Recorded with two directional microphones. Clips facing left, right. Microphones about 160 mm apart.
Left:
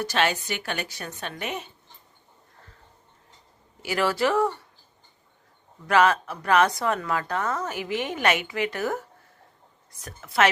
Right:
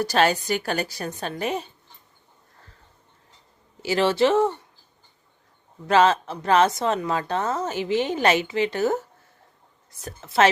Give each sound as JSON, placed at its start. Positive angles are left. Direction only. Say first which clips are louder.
{"t": 0.0, "sound": "a woman's voice", "louder": "right 4 dB", "side_deg": -35}
{"t": 3.8, "sound": "a woman's voice", "louder": "right 4 dB", "side_deg": -25}
{"t": 5.9, "sound": "a woman's voice", "louder": "right 2 dB", "side_deg": -25}